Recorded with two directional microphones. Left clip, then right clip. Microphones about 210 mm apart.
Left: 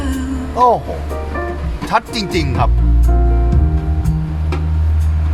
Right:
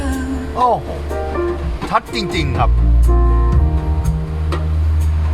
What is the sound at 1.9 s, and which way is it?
Speech, 25° left (ahead or behind).